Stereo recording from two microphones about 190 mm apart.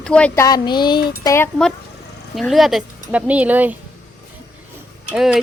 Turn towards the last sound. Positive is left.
turn(degrees=-5)  # may be behind; listen again after turning